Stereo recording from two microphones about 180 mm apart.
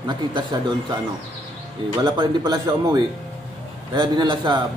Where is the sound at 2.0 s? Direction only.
25° right (ahead or behind).